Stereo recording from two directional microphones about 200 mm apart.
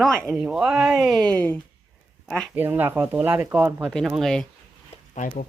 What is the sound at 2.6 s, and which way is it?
Speech, 10° right (ahead or behind).